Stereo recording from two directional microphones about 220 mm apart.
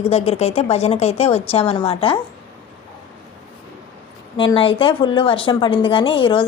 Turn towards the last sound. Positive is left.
turn(degrees=20)  # may be behind; listen again after turning